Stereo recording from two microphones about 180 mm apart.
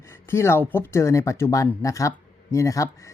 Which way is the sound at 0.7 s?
15° left (ahead or behind).